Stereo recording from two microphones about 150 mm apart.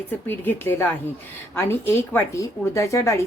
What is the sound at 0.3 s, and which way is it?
A woman's voice, 15° left (ahead or behind).